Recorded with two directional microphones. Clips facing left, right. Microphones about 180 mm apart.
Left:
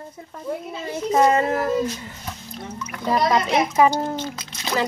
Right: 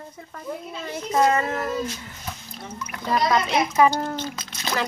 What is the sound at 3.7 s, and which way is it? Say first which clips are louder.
Speech: even; 15° left (ahead or behind).